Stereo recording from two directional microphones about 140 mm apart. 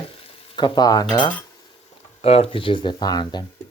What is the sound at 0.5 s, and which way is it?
Speech, 30° left (ahead or behind).